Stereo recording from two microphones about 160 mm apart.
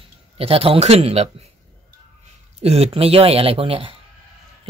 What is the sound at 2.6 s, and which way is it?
Speech, 40° right (ahead or behind).